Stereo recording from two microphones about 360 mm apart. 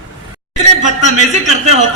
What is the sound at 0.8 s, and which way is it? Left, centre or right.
A man's voice, centre.